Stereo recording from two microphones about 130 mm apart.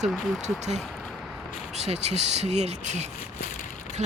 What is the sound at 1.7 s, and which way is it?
Speech, 55° right (ahead or behind).